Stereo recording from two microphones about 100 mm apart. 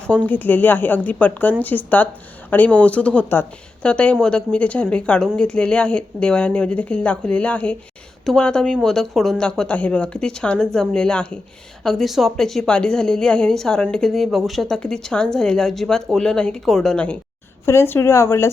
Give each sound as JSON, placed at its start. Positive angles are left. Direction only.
{"t": 0.3, "sound": "a woman's voice", "side_deg": 20}
{"t": 17.7, "sound": "speech", "side_deg": 25}